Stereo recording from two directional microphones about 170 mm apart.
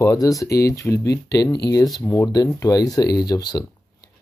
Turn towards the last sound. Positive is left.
turn(degrees=25)  # may be behind; listen again after turning